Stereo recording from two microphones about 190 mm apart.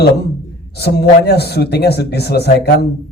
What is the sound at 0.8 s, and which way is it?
A man's voice, 55° left (ahead or behind).